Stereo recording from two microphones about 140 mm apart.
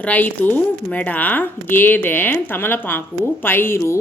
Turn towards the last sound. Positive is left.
turn(degrees=15)  # may be behind; listen again after turning